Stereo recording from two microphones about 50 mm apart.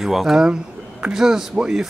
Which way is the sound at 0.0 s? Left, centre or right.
Centre.